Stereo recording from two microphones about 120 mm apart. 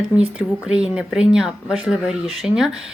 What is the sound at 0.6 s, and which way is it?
A woman's voice, 5° right (ahead or behind).